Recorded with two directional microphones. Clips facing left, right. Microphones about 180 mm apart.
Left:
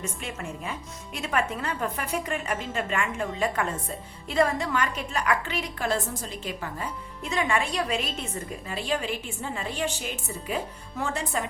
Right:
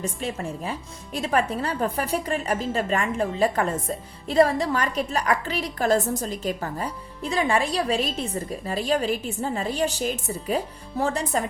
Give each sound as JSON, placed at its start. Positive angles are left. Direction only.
{"t": 0.0, "sound": "speech", "side_deg": -35}